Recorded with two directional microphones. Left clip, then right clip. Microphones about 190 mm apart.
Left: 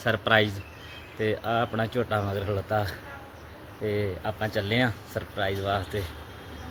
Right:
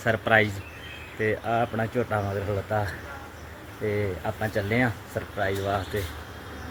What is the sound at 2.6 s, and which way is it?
Speech, 5° left (ahead or behind).